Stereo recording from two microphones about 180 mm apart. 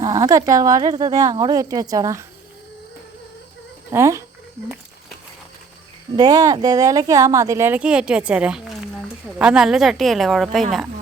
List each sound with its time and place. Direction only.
0.0 s a woman's voice: 20° right (ahead or behind)
3.9 s speech: 15° right (ahead or behind)
6.1 s a woman's voice: 20° right (ahead or behind); by 10.8 s centre (ahead or behind)